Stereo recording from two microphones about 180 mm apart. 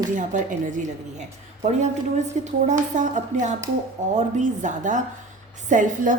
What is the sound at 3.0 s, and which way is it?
A woman's voice, 45° right (ahead or behind).